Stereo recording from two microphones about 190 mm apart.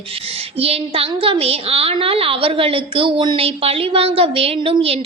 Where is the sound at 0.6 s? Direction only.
30° right (ahead or behind).